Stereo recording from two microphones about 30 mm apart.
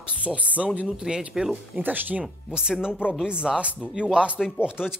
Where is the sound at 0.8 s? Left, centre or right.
Right.